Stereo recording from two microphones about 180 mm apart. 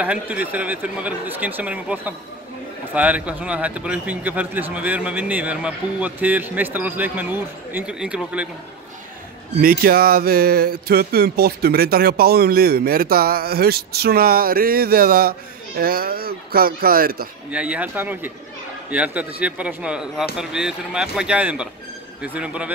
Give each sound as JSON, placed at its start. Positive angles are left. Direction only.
{"t": 0.0, "sound": "a man's voice", "side_deg": -10}
{"t": 9.6, "sound": "speech", "side_deg": -55}
{"t": 17.5, "sound": "a man's voice", "side_deg": -5}